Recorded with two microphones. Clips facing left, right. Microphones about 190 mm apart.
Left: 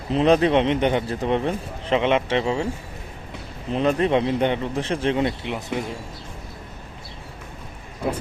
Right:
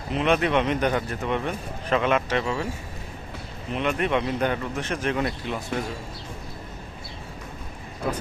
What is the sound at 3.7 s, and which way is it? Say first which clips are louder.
Speech: left 5 dB; 30° left (ahead or behind).